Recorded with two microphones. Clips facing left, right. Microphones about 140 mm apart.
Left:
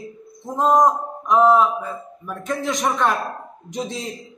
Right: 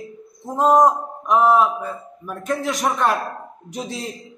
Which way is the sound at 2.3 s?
10° right (ahead or behind).